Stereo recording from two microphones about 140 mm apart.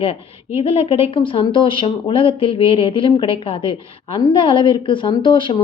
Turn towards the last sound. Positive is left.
turn(degrees=35)  # may be behind; listen again after turning